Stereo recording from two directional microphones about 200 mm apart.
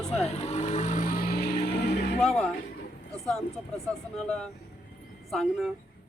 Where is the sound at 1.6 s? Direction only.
55° left (ahead or behind).